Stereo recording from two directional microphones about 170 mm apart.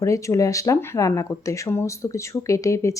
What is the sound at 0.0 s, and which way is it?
Speech, 20° left (ahead or behind).